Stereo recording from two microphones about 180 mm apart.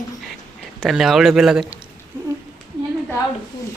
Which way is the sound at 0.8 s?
Centre (ahead or behind).